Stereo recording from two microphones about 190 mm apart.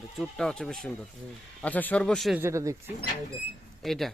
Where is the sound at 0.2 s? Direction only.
5° left (ahead or behind).